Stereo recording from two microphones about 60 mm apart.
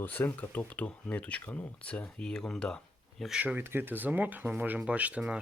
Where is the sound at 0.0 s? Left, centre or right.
Left.